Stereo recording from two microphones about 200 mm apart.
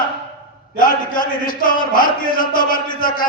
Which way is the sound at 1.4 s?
45° left (ahead or behind).